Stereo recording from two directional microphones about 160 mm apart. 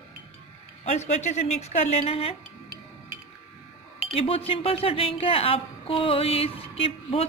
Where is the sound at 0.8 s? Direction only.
45° left (ahead or behind).